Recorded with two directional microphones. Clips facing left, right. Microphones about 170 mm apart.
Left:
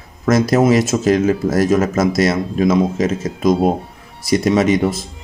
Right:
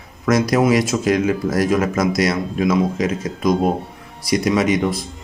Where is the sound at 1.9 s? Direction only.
25° left (ahead or behind).